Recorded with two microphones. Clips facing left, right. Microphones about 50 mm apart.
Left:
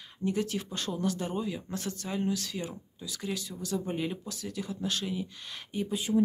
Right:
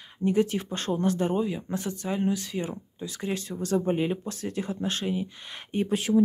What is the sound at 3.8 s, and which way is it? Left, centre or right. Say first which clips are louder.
Speech: right 7 dB; right.